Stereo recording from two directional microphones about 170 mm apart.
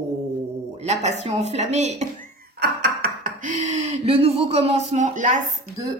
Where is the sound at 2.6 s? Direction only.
60° right (ahead or behind).